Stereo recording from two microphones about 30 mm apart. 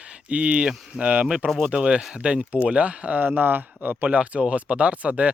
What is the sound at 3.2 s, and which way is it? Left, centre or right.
Speech, right.